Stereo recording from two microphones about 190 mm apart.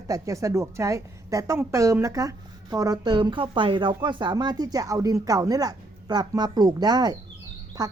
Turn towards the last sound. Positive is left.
turn(degrees=-20)  # may be behind; listen again after turning